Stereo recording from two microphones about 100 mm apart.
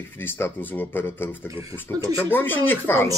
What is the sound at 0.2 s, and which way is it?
Speech, 20° left (ahead or behind).